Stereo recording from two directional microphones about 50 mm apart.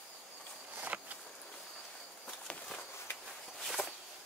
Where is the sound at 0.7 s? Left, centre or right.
Right.